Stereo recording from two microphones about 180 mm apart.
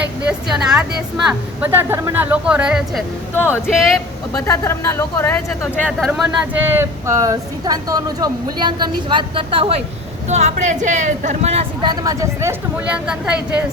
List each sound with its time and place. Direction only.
0.3 s a woman's voice: 5° right (ahead or behind)
3.3 s speech: 10° left (ahead or behind)
3.7 s a woman's voice: centre (ahead or behind)
4.4 s speech: 15° left (ahead or behind)
6.1 s speech: 10° right (ahead or behind); by 11.9 s 35° right (ahead or behind)
11.9 s speech: 20° right (ahead or behind)